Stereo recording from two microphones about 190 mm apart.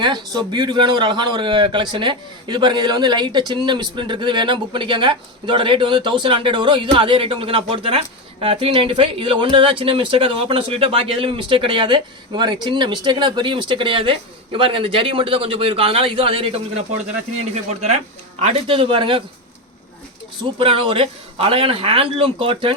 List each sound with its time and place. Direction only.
0.0 s speech: 25° right (ahead or behind)
20.6 s speech: 30° right (ahead or behind)